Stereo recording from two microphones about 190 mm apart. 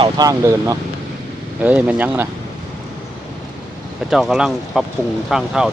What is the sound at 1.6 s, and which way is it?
Speech, 5° right (ahead or behind).